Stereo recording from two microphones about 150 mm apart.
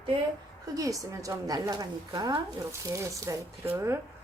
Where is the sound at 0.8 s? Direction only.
20° right (ahead or behind).